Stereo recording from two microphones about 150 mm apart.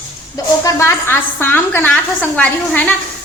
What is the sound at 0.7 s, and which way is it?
A woman's voice, 20° left (ahead or behind).